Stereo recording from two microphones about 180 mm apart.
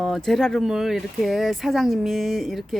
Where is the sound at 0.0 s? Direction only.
Centre (ahead or behind).